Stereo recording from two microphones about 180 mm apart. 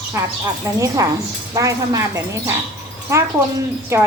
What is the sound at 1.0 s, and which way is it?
Speech, 20° right (ahead or behind).